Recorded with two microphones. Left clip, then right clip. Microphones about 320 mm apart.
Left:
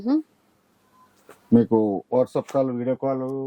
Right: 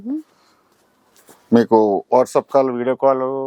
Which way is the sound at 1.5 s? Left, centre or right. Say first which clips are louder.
Right 6 dB; centre.